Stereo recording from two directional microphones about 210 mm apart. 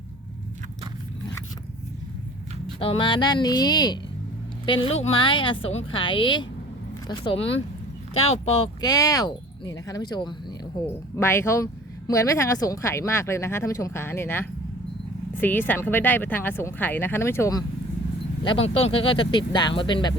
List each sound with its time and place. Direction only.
2.7 s speech: 25° left (ahead or behind)
18.4 s speech: 25° left (ahead or behind)